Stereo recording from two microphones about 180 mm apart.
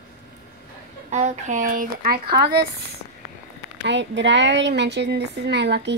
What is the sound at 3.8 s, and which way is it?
A woman's voice, 80° right.